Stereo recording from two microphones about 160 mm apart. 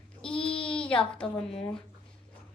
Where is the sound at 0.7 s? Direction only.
5° left (ahead or behind).